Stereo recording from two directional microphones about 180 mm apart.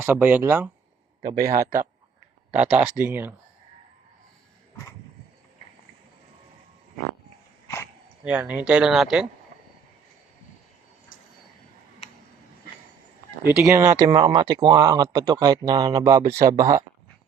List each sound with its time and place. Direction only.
0.0 s speech: 10° right (ahead or behind)
1.4 s a man's voice: 55° right (ahead or behind)
2.5 s speech: 40° right (ahead or behind)
2.7 s speech: 5° right (ahead or behind)
8.2 s speech: 5° right (ahead or behind)
13.5 s speech: 5° right (ahead or behind)